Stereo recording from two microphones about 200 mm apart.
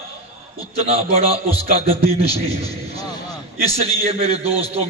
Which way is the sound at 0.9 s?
30° right (ahead or behind).